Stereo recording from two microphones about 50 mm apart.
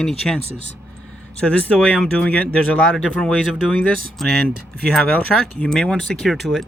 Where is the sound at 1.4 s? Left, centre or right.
Left; by 5.4 s centre.